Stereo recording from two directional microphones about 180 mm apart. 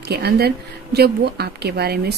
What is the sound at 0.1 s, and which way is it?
Speech, 65° right (ahead or behind).